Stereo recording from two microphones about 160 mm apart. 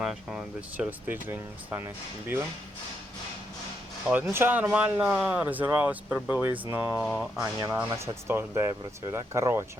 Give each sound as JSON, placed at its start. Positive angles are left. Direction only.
{"t": 0.0, "sound": "speech", "side_deg": -5}
{"t": 4.0, "sound": "speech", "side_deg": -10}
{"t": 7.0, "sound": "speech", "side_deg": 0}
{"t": 7.8, "sound": "speech", "side_deg": -15}